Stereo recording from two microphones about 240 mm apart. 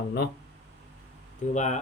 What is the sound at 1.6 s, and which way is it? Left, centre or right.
Speech, left.